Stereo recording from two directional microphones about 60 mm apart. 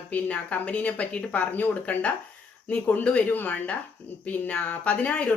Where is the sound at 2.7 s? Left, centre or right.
Left.